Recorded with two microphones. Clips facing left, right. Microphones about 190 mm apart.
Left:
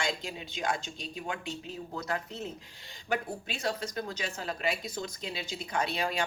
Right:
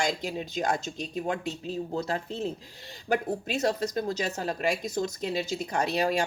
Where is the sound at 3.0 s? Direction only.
40° right (ahead or behind).